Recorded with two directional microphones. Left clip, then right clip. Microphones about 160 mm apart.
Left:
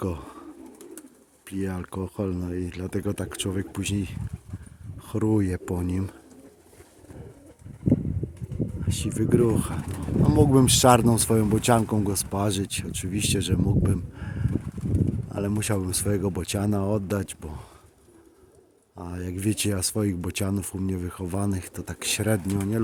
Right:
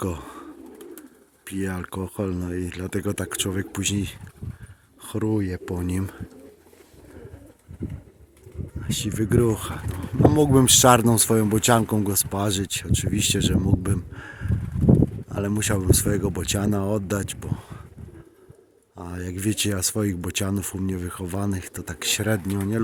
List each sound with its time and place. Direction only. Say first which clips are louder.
0.0 s bird: right 2 dB; centre (ahead or behind)
1.5 s speech: right 2 dB; centre (ahead or behind)
5.3 s speech: left 2 dB; 20° left (ahead or behind)
5.7 s speech: right 1 dB; centre (ahead or behind)
8.8 s speech: right 4 dB; centre (ahead or behind)
18.9 s speech: right 1 dB; 5° left (ahead or behind)